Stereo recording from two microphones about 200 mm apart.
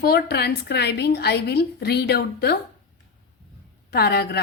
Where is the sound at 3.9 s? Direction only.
50° left (ahead or behind).